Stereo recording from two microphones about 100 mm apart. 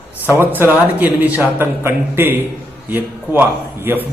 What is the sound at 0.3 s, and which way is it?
A man's voice, 20° right (ahead or behind).